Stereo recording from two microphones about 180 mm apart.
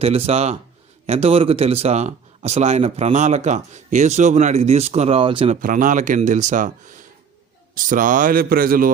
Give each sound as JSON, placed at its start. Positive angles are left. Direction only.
{"t": 0.0, "sound": "speech", "side_deg": -35}
{"t": 5.5, "sound": "speech", "side_deg": -50}